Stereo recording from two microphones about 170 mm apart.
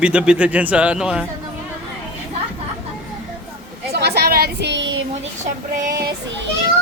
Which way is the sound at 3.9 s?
70° right (ahead or behind).